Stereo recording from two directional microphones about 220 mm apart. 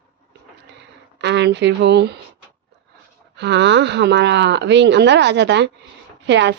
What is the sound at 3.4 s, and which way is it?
Speech, 50° right (ahead or behind).